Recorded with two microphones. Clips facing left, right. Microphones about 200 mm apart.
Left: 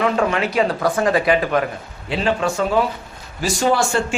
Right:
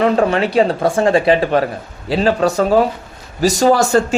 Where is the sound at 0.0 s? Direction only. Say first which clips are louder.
Right 5 dB; 35° right (ahead or behind).